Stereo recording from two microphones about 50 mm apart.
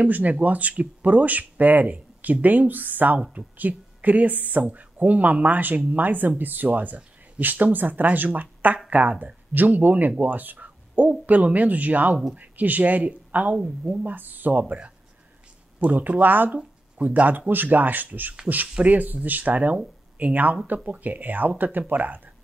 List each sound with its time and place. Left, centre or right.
0.0 s speech: right
14.0 s speech: right
16.4 s speech: right